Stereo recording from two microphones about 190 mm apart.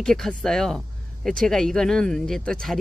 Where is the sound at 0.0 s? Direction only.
5° left (ahead or behind).